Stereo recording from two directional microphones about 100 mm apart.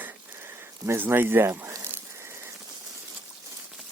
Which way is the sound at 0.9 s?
20° right (ahead or behind).